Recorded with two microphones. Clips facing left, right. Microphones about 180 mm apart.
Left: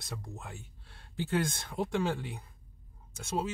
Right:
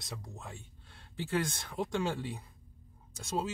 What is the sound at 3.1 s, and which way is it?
Speech, centre (ahead or behind).